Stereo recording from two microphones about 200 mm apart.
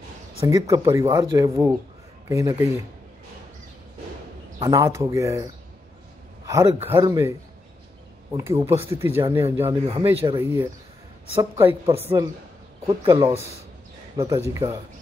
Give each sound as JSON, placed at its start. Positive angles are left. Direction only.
{"t": 0.4, "sound": "speech", "side_deg": -20}
{"t": 4.6, "sound": "speech", "side_deg": -15}
{"t": 8.4, "sound": "speech", "side_deg": -10}
{"t": 11.8, "sound": "a woman's voice", "side_deg": -30}
{"t": 12.8, "sound": "speech", "side_deg": -15}